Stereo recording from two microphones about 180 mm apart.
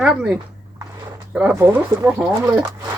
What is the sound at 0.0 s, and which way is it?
Speech, 5° right (ahead or behind).